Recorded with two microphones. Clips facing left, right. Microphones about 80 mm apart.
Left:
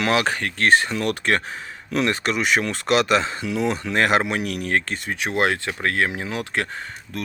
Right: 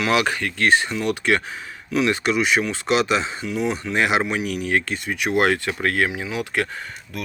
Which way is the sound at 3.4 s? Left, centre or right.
Left.